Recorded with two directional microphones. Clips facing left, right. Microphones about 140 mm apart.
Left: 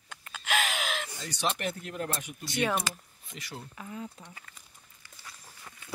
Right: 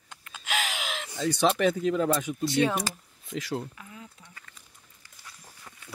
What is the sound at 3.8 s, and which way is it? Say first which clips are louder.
Speech: left 6 dB; 40° left (ahead or behind).